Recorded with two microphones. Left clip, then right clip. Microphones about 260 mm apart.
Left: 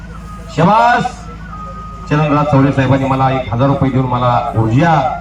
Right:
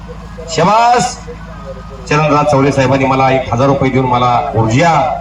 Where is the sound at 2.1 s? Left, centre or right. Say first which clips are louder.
Right 3 dB; right.